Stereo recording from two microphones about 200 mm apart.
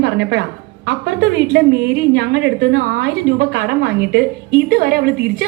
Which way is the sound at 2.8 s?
50° right (ahead or behind).